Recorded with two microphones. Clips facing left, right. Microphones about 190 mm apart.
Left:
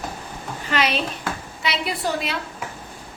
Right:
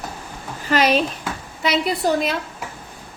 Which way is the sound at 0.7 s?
40° right (ahead or behind).